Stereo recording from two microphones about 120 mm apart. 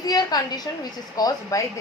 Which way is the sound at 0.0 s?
35° left (ahead or behind).